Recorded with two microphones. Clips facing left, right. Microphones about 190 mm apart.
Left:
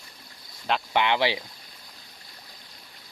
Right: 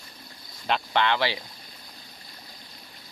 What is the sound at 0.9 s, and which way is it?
Speech, 15° left (ahead or behind).